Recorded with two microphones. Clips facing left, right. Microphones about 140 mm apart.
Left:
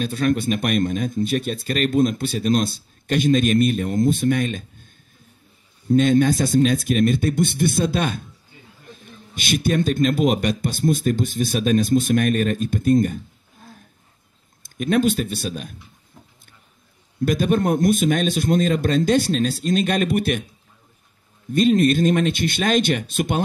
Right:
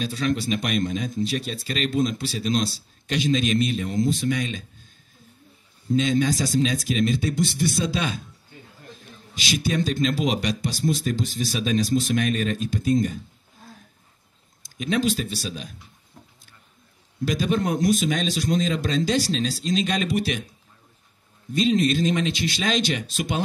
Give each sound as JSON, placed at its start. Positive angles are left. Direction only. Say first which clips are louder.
{"t": 0.0, "sound": "speech", "louder": "left 4 dB", "side_deg": 55}
{"t": 5.9, "sound": "speech", "louder": "left 5 dB", "side_deg": 55}
{"t": 9.3, "sound": "speech", "louder": "left 4 dB", "side_deg": 55}
{"t": 14.6, "sound": "speech", "louder": "left 5 dB", "side_deg": 55}
{"t": 17.2, "sound": "speech", "louder": "left 4 dB", "side_deg": 50}
{"t": 21.5, "sound": "speech", "louder": "left 4 dB", "side_deg": 55}